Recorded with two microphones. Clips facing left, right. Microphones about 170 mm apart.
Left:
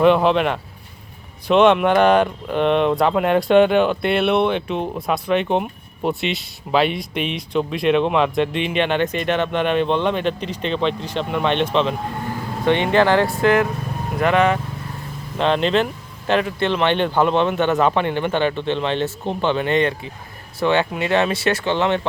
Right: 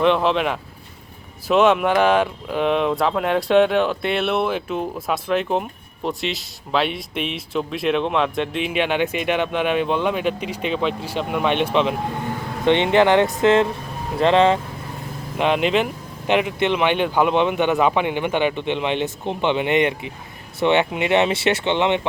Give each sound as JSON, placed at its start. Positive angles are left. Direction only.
{"t": 0.0, "sound": "speech", "side_deg": 5}
{"t": 15.4, "sound": "speech", "side_deg": -10}